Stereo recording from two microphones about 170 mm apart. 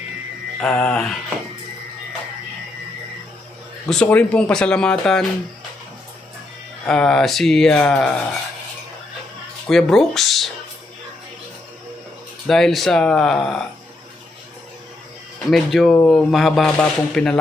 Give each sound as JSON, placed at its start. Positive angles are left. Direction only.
{"t": 0.6, "sound": "speech", "side_deg": 5}
{"t": 3.8, "sound": "speech", "side_deg": 5}
{"t": 6.8, "sound": "speech", "side_deg": 5}
{"t": 9.6, "sound": "speech", "side_deg": 0}
{"t": 12.5, "sound": "speech", "side_deg": 0}
{"t": 15.4, "sound": "speech", "side_deg": 0}